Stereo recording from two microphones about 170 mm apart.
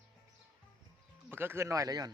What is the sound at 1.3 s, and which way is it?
Speech, 15° right (ahead or behind).